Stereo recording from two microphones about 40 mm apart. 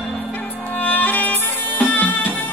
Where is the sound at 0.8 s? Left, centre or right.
Left.